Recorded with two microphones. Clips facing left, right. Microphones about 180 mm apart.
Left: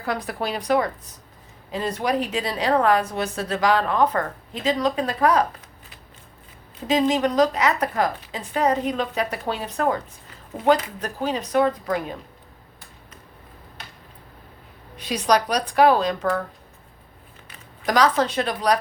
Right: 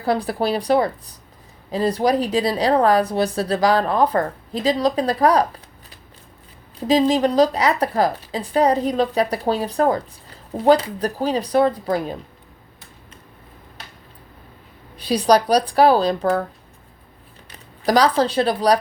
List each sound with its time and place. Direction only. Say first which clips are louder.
0.0 s a woman's voice: right 6 dB; 30° right (ahead or behind)
6.7 s a woman's voice: right 4 dB; 35° right (ahead or behind)
14.9 s a woman's voice: right 5 dB; 35° right (ahead or behind)
17.5 s speech: right 5 dB; 35° right (ahead or behind)